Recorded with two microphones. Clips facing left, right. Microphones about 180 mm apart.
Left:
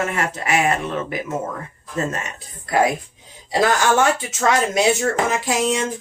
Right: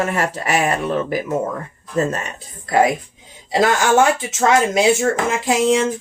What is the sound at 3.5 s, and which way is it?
Speech, 25° right (ahead or behind).